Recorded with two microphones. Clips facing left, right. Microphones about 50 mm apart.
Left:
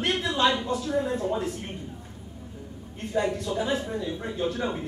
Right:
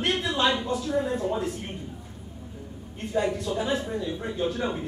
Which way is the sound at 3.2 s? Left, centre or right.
Centre.